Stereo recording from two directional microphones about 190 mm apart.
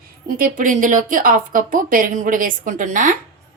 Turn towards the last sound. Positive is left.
turn(degrees=-45)  # may be behind; listen again after turning